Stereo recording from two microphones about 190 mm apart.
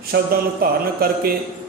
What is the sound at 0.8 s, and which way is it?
Speech, 50° right (ahead or behind).